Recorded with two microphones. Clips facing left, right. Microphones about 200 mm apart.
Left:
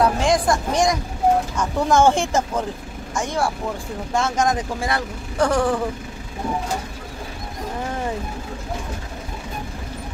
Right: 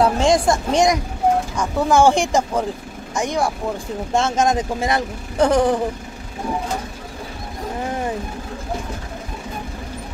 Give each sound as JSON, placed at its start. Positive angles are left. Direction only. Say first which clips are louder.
{"t": 0.0, "sound": "speech", "louder": "right 2 dB", "side_deg": -25}
{"t": 1.6, "sound": "speech", "louder": "right 3 dB", "side_deg": -10}